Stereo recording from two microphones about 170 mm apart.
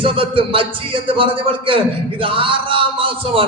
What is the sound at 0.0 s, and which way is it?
A man's voice, 30° right (ahead or behind).